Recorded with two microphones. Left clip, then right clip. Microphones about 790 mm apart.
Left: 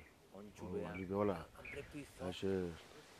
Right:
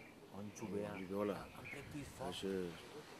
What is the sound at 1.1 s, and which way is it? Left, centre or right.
Speech, left.